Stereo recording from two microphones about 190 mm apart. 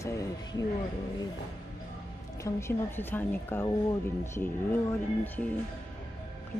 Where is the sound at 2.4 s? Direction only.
10° left (ahead or behind).